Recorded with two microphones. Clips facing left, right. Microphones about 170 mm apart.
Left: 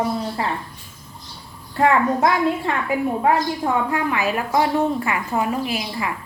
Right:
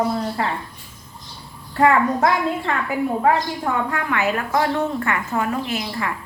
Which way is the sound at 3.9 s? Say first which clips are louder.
Left 1 dB; 15° left (ahead or behind).